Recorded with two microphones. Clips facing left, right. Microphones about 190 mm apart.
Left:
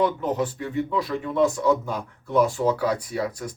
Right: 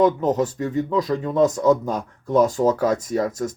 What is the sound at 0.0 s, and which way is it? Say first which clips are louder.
Speech: right 5 dB; 40° right (ahead or behind).